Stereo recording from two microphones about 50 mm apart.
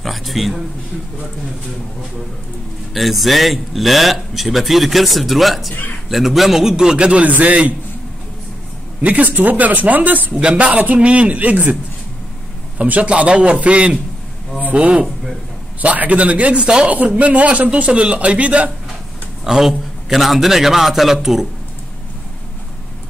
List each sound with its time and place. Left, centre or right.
0.0 s a sound: centre
2.9 s a man's voice: centre; by 7.7 s right
9.0 s a man's voice: right
12.7 s speech: right
16.5 s a man's voice: centre
17.1 s speech: right
19.4 s speech: centre